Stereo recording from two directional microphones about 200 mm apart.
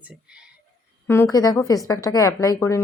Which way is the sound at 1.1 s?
15° left (ahead or behind).